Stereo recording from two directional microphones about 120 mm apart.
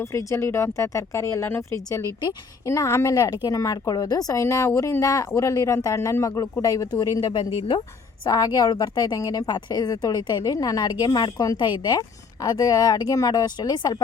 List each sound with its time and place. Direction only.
0.0 s a woman's voice: 25° left (ahead or behind)